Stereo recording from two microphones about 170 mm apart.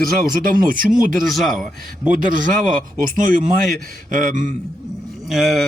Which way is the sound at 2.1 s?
50° right (ahead or behind).